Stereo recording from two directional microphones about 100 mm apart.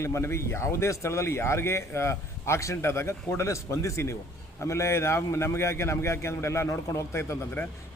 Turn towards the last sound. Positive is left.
turn(degrees=20)  # may be behind; listen again after turning